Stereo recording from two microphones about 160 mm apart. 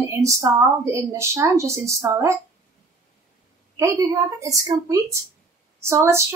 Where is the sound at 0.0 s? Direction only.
20° right (ahead or behind).